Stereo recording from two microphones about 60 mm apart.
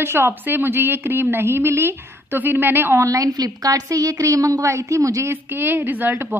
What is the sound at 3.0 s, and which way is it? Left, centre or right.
A woman's voice, right.